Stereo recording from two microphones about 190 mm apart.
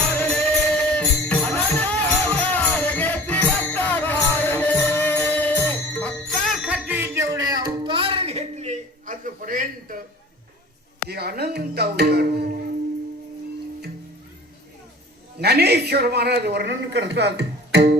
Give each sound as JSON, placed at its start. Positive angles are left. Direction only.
{"t": 0.1, "sound": "music", "side_deg": 5}
{"t": 11.1, "sound": "a man's voice", "side_deg": -55}
{"t": 15.4, "sound": "a man's voice", "side_deg": -60}